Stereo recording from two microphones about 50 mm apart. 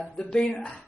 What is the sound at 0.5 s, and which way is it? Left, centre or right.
Speech, left.